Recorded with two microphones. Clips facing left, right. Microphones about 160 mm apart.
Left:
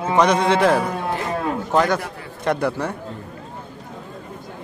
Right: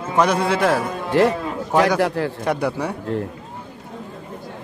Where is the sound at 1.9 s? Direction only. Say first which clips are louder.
Right 11 dB; 85° right.